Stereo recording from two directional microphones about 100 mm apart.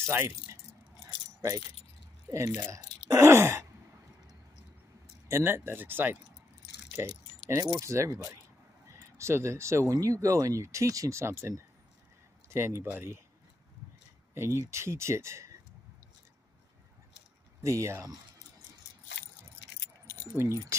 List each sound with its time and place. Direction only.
0.0 s speech: 25° right (ahead or behind)
1.0 s keys jangling: 35° right (ahead or behind)
2.3 s speech: 25° right (ahead or behind)
3.1 s sigh: 30° right (ahead or behind)
5.3 s speech: 20° right (ahead or behind)
7.8 s speech: 30° right (ahead or behind)
14.3 s speech: 25° right (ahead or behind)
17.6 s speech: 30° right (ahead or behind)
20.3 s speech: 25° right (ahead or behind)